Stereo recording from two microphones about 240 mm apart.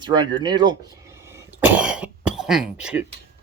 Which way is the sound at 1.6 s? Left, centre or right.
Centre.